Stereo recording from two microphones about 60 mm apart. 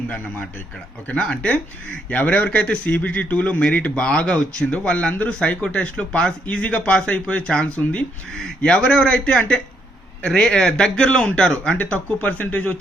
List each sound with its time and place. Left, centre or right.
1.0 s a man's voice: centre
11.8 s a man's voice: left